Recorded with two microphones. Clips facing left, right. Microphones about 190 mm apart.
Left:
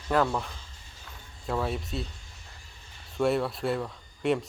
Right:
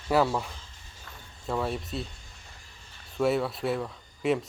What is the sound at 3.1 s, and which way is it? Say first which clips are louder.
Speech: even; centre (ahead or behind).